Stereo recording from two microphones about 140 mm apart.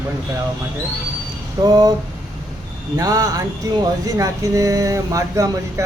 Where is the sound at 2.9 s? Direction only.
25° right (ahead or behind).